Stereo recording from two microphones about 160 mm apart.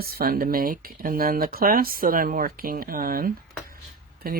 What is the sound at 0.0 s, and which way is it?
Speech, 70° right (ahead or behind).